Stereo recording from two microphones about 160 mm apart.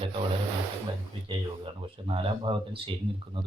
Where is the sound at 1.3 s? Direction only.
35° right (ahead or behind).